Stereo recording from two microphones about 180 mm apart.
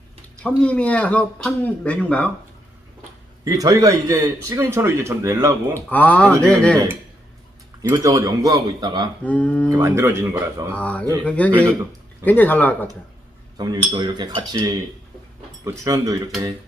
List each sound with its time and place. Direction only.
0.4 s speech: 5° left (ahead or behind)
3.4 s a man's voice: 20° right (ahead or behind)
5.9 s speech: 10° left (ahead or behind)
7.8 s a man's voice: 20° right (ahead or behind)
9.2 s speech: 10° left (ahead or behind)
9.6 s a man's voice: 15° right (ahead or behind)
10.8 s speech: 5° left (ahead or behind)
13.6 s a man's voice: 25° right (ahead or behind)